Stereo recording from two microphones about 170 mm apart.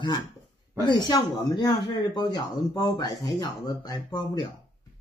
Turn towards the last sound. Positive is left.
turn(degrees=25)  # may be behind; listen again after turning